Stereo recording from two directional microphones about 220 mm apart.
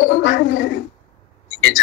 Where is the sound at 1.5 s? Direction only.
55° left (ahead or behind).